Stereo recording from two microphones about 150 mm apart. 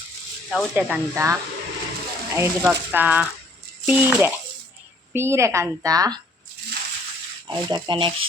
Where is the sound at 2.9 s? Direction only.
10° right (ahead or behind).